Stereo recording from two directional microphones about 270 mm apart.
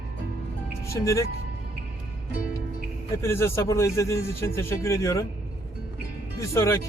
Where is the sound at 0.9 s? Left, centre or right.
Centre.